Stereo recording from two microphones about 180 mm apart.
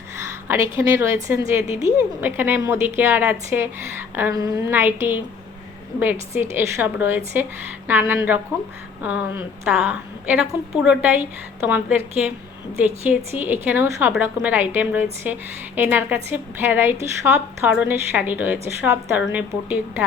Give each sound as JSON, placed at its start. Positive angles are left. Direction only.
{"t": 0.4, "sound": "a woman's voice", "side_deg": -15}